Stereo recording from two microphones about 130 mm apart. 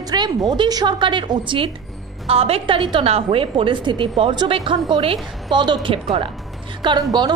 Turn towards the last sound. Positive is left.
turn(degrees=-35)  # may be behind; listen again after turning